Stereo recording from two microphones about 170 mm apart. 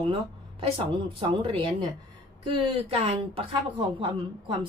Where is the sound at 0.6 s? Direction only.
30° right (ahead or behind).